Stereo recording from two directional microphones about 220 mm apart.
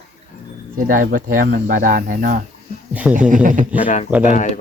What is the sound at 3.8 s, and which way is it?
Speech, 35° left (ahead or behind).